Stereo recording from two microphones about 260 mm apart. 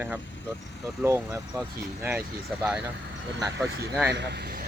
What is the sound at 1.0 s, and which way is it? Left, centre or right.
Speech, centre.